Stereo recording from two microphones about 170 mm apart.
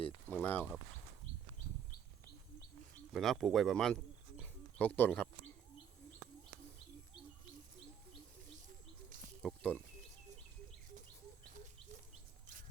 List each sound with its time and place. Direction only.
0.3 s speech: 10° left (ahead or behind)
3.1 s speech: centre (ahead or behind)
8.6 s bird: 50° right (ahead or behind)
9.4 s speech: 5° left (ahead or behind)
11.5 s bird: 45° right (ahead or behind)